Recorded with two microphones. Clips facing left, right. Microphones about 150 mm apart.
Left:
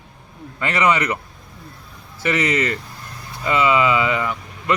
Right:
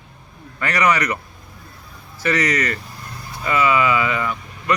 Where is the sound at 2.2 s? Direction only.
25° left (ahead or behind).